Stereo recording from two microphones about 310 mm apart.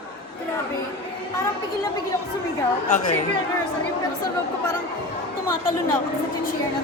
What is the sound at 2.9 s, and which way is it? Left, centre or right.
Speech, left.